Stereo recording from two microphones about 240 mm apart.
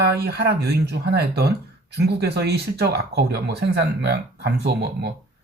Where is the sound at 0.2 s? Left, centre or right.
Right.